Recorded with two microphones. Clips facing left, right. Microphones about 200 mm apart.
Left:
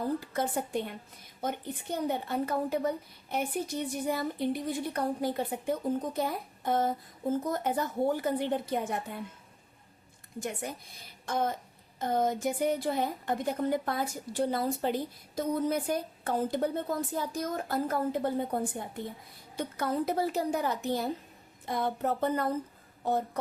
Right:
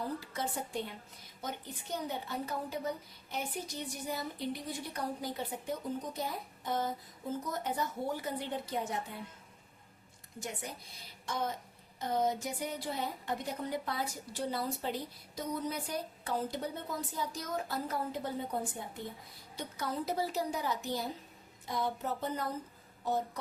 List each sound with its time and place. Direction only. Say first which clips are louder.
0.3 s speech: left 6 dB; 55° left (ahead or behind)
11.3 s a woman's voice: left 6 dB; 55° left (ahead or behind)
19.5 s speech: left 7 dB; 55° left (ahead or behind)